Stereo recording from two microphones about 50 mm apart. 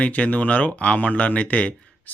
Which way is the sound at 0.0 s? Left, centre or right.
Left.